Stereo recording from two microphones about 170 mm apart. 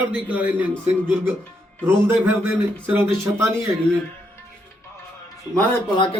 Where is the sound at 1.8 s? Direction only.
10° right (ahead or behind).